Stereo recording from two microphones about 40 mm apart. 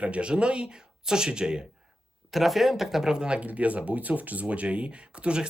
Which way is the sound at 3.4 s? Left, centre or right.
Right.